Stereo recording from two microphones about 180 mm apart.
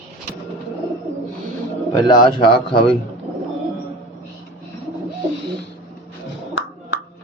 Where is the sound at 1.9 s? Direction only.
25° left (ahead or behind).